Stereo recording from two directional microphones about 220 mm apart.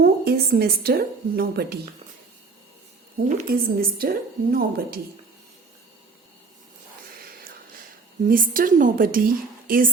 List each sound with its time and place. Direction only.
0.0 s a woman's voice: 45° right (ahead or behind)
3.2 s a woman's voice: 40° right (ahead or behind)
8.3 s a woman's voice: 40° right (ahead or behind)